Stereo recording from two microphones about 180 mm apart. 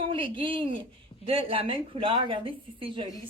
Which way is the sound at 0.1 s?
30° right (ahead or behind).